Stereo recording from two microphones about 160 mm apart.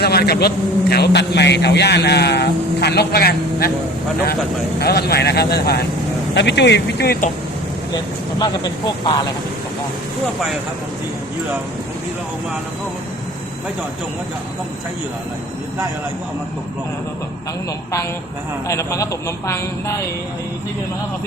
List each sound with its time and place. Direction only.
0.0 s a man's voice: 80° left
4.8 s a man's voice: 80° left
7.9 s speech: 25° left (ahead or behind)
18.7 s a man's voice: 20° left (ahead or behind)